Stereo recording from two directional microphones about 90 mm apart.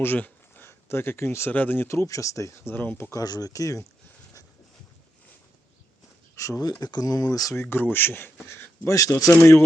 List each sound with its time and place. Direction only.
0.0 s speech: 20° left (ahead or behind)
3.1 s speech: 45° left (ahead or behind)
6.3 s speech: 35° left (ahead or behind)
6.6 s speech: 45° left (ahead or behind)
7.5 s speech: 25° left (ahead or behind)
9.0 s speech: 40° left (ahead or behind)
9.4 s speech: 25° left (ahead or behind)